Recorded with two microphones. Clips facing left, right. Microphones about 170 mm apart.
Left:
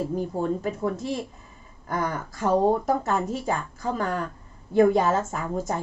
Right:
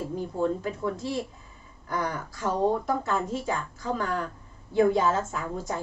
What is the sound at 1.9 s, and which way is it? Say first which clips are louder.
A woman's voice: left 2 dB; 45° left (ahead or behind).